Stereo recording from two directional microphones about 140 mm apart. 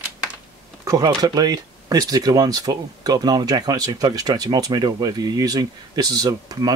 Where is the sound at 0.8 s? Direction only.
25° right (ahead or behind).